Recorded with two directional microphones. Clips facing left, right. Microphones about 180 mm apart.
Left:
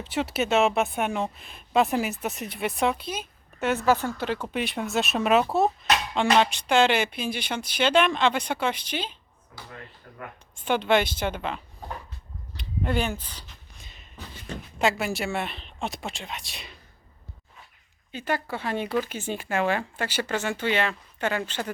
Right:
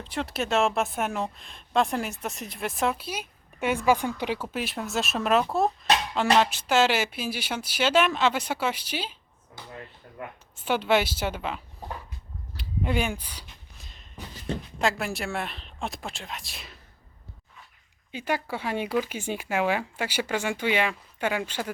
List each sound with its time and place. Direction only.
0.0 s a woman's voice: centre (ahead or behind); by 4.4 s 15° right (ahead or behind)
4.4 s a woman's voice: centre (ahead or behind)
10.5 s speech: 5° right (ahead or behind)
12.5 s a sound: 10° right (ahead or behind)
13.8 s a sound: centre (ahead or behind)
14.3 s speech: 35° right (ahead or behind)
14.8 s a woman's voice: centre (ahead or behind)
18.1 s speech: 10° right (ahead or behind)